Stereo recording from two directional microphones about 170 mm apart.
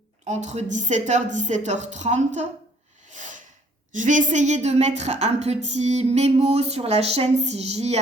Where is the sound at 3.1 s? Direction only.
45° right (ahead or behind).